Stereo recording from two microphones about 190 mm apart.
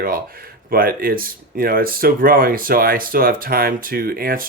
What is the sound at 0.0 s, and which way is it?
Speech, 50° right (ahead or behind).